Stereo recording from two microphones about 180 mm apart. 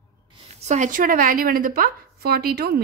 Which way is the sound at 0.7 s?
45° right (ahead or behind).